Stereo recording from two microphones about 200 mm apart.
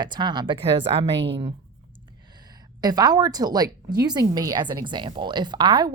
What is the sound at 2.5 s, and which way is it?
Speech, 20° right (ahead or behind).